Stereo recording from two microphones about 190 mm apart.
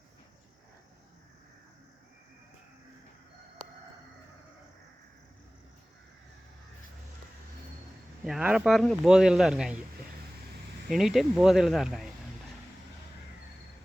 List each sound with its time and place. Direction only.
8.2 s speech: 5° right (ahead or behind)
10.8 s speech: centre (ahead or behind)